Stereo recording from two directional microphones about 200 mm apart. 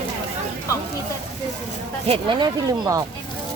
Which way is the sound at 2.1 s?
25° right (ahead or behind).